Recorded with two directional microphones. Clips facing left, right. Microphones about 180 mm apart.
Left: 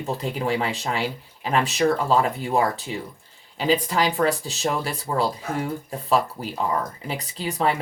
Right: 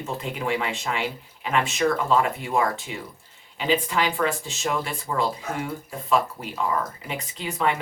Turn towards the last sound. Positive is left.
turn(degrees=35)  # may be behind; listen again after turning